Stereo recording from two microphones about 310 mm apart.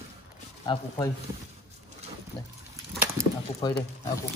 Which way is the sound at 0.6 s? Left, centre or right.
Centre.